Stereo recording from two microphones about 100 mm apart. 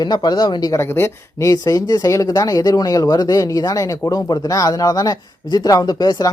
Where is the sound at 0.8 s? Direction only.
25° left (ahead or behind).